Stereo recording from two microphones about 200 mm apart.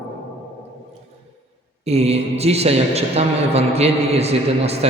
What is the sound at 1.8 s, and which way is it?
A man's voice, 30° right (ahead or behind).